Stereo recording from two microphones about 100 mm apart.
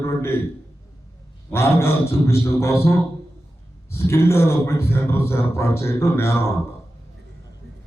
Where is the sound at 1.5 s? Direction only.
25° left (ahead or behind).